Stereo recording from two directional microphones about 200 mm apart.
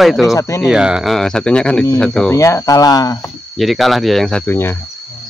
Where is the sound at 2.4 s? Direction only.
15° left (ahead or behind).